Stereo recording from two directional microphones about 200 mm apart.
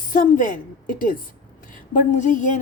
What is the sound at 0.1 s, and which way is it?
A woman's voice, 40° left (ahead or behind).